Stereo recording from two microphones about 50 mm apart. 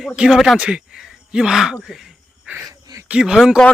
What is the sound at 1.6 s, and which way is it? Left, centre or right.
Speech, centre.